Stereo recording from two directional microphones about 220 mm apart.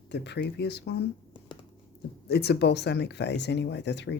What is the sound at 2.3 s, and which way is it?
Speech, 50° left (ahead or behind).